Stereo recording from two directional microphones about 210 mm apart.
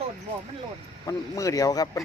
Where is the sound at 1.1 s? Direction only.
15° left (ahead or behind).